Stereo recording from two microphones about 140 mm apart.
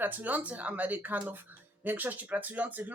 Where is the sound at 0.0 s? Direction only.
15° right (ahead or behind).